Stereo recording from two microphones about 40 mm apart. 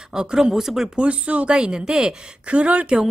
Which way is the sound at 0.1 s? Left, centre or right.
Centre.